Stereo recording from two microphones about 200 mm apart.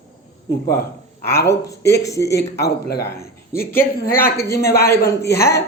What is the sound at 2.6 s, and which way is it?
Speech, 50° left (ahead or behind).